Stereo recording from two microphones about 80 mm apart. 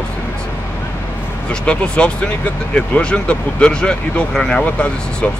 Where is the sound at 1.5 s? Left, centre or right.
Centre.